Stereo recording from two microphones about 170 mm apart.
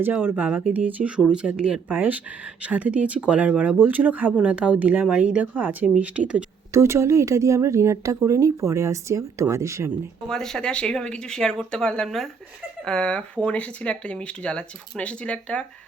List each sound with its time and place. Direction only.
0.0 s speech: 10° right (ahead or behind)
10.2 s speech: 5° left (ahead or behind)